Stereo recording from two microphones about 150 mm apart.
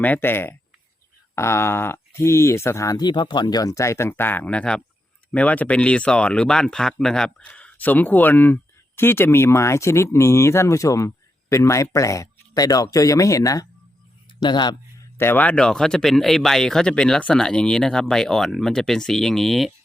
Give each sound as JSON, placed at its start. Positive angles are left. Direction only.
{"t": 0.0, "sound": "speech", "side_deg": 15}
{"t": 15.2, "sound": "speech", "side_deg": 15}